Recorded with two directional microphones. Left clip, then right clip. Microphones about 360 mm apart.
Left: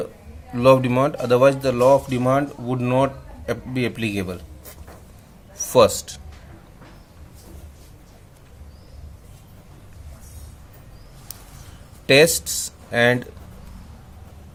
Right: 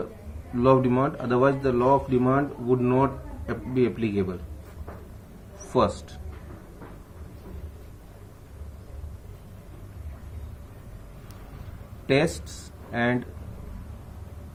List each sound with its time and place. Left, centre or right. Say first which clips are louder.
0.5 s speech: left 5 dB; left
12.0 s speech: left 9 dB; left